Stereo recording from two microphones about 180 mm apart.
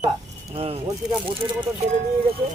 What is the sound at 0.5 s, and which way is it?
Speech, 35° right (ahead or behind).